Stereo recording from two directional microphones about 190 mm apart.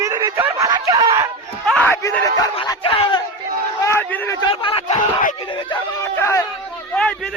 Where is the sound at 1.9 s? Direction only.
15° left (ahead or behind).